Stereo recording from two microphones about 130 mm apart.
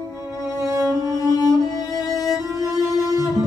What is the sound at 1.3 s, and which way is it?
Music, 30° left (ahead or behind).